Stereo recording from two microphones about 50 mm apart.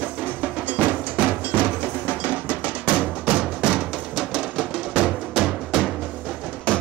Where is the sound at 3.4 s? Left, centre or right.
Centre.